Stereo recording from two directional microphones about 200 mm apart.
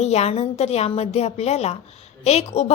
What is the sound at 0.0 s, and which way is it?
A woman's voice, 35° left (ahead or behind).